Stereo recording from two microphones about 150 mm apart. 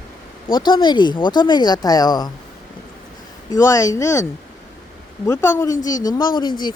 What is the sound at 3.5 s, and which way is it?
Speech, 20° left (ahead or behind).